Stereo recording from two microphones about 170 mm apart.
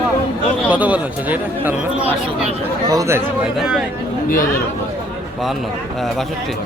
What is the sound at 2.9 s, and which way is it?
Speech, 20° right (ahead or behind).